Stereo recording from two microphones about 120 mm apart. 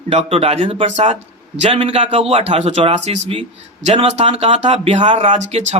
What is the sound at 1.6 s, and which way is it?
Speech, 50° right (ahead or behind).